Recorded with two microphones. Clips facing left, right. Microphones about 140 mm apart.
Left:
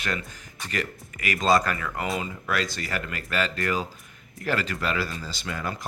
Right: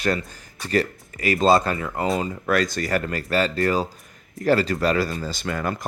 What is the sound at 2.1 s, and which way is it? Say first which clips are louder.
Speech: right 6 dB; 45° right (ahead or behind).